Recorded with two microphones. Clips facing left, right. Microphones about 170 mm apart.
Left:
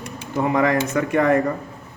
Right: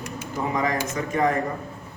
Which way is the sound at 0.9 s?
65° left (ahead or behind).